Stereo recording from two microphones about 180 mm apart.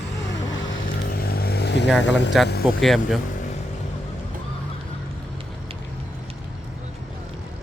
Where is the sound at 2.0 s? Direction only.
75° left (ahead or behind).